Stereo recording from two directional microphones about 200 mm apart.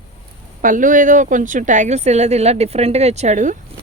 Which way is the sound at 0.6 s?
40° right (ahead or behind).